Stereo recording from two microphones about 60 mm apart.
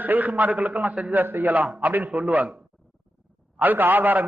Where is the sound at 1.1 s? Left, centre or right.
Right.